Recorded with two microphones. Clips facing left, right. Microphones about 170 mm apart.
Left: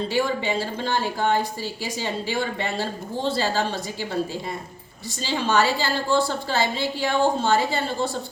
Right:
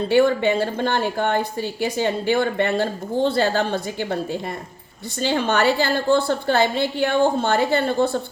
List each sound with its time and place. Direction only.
0.1 s a woman's voice: 60° right (ahead or behind)